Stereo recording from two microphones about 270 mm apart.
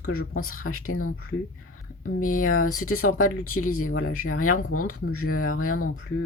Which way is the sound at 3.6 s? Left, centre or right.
Left.